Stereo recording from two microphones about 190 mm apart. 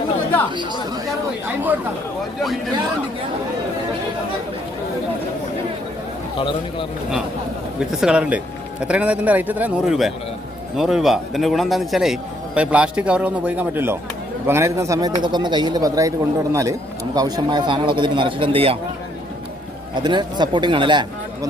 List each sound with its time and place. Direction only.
0.5 s a man's voice: 25° right (ahead or behind)
6.3 s speech: 25° left (ahead or behind)
8.0 s a man's voice: 5° right (ahead or behind); by 18.8 s 30° right (ahead or behind)
20.0 s a man's voice: 25° right (ahead or behind)